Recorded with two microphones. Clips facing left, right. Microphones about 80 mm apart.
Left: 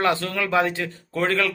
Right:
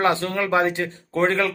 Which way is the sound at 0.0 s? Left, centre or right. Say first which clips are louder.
Right 2 dB; right.